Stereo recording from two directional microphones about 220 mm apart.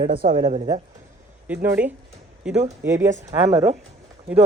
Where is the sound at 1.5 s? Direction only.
10° right (ahead or behind).